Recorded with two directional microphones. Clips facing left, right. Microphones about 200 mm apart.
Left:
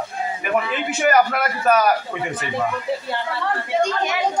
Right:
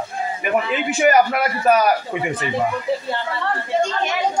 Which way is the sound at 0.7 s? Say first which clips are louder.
Right 3 dB; 5° right (ahead or behind).